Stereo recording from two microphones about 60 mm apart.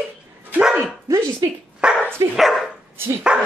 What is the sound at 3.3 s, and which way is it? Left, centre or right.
Dog, centre.